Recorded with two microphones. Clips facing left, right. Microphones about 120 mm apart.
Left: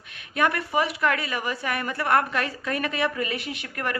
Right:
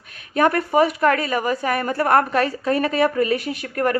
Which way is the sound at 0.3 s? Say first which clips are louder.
Right 7 dB; 40° right (ahead or behind).